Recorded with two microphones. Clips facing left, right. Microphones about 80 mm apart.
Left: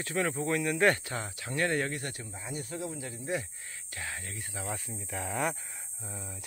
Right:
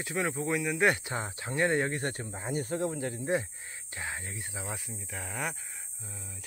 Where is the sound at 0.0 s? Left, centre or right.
Centre.